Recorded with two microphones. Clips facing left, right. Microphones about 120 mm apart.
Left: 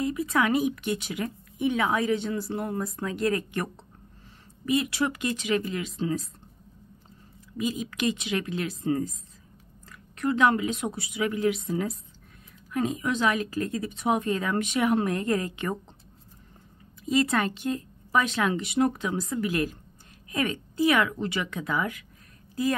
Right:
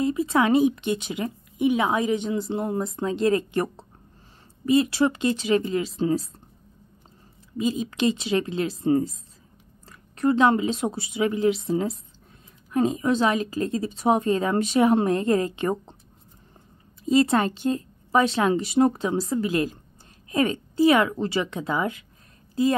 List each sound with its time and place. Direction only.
0.0 s speech: 25° right (ahead or behind)
7.5 s speech: 30° right (ahead or behind)
17.0 s speech: 30° right (ahead or behind)